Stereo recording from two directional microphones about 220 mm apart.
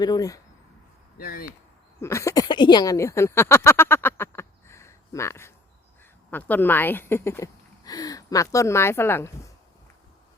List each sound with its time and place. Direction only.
0.0 s speech: 15° left (ahead or behind)
1.2 s speech: 40° left (ahead or behind)
2.0 s speech: 10° left (ahead or behind)